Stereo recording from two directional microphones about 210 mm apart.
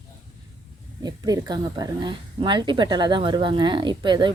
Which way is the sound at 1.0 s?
20° right (ahead or behind).